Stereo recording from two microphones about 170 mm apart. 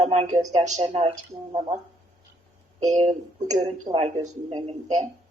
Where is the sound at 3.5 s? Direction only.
45° right (ahead or behind).